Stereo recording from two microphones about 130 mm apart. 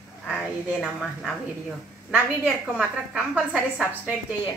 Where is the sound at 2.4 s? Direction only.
5° right (ahead or behind).